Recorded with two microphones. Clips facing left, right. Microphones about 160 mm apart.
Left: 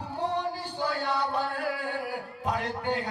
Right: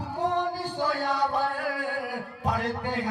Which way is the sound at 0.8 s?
40° right (ahead or behind).